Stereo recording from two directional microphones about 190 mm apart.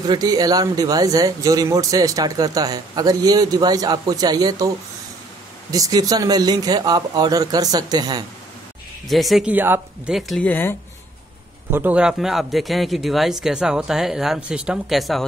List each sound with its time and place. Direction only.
0.0 s speech: 20° right (ahead or behind)
5.7 s speech: 20° right (ahead or behind)
9.0 s speech: centre (ahead or behind)
11.7 s speech: 10° right (ahead or behind)